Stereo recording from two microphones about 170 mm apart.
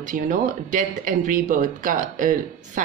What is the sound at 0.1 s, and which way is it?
Speech, 50° right (ahead or behind).